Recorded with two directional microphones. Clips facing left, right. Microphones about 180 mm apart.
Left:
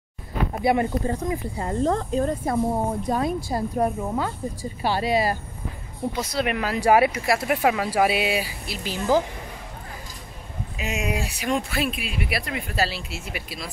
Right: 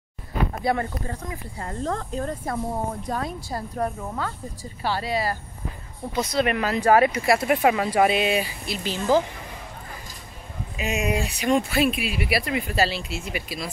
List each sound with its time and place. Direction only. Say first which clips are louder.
0.7 s speech: left 8 dB; 20° left (ahead or behind)
6.1 s speech: right 4 dB; 5° left (ahead or behind)
7.2 s speech: right 2 dB; centre (ahead or behind)
10.8 s speech: right 3 dB; 5° left (ahead or behind)